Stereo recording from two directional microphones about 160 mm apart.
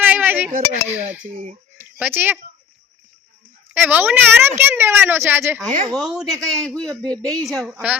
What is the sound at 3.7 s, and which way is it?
A woman's voice, 10° right (ahead or behind).